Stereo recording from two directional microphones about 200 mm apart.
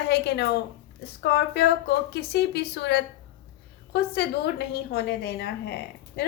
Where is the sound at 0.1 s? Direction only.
55° left (ahead or behind).